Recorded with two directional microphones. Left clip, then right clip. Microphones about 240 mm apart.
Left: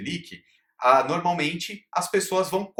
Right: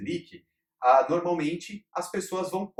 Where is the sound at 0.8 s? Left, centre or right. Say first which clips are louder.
Left 1 dB; left.